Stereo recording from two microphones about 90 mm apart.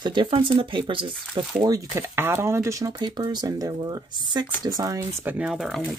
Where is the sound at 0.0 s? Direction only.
60° right (ahead or behind).